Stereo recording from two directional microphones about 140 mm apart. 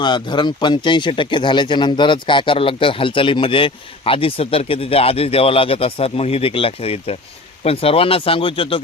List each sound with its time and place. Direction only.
0.0 s speech: 35° left (ahead or behind)